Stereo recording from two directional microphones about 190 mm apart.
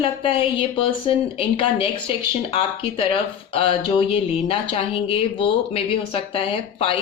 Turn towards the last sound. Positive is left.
turn(degrees=25)  # may be behind; listen again after turning